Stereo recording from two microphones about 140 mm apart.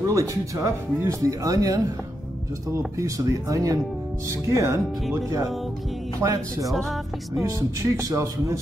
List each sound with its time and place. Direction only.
0.0 s speech: 25° right (ahead or behind)
3.0 s speech: 25° right (ahead or behind)
6.7 s music: centre (ahead or behind)
7.4 s speech: 25° right (ahead or behind)